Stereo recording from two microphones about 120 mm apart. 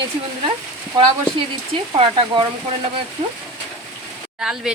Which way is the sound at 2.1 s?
45° right (ahead or behind).